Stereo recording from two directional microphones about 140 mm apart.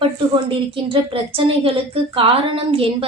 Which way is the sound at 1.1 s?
40° right (ahead or behind).